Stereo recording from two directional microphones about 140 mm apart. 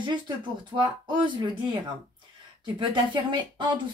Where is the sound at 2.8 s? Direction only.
35° right (ahead or behind).